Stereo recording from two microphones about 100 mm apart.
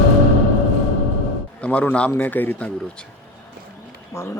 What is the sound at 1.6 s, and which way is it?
A man's voice, 10° left (ahead or behind).